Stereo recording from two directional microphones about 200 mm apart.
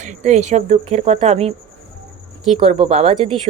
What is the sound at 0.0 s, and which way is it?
Speech, 35° right (ahead or behind).